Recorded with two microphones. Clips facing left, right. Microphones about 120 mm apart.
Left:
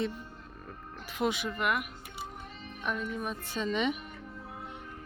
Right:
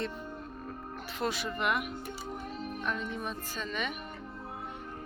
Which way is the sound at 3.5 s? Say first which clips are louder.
Left 9 dB; 20° left (ahead or behind).